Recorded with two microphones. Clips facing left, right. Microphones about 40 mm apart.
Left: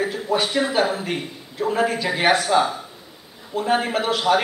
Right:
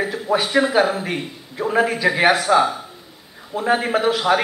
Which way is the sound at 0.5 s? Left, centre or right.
Centre.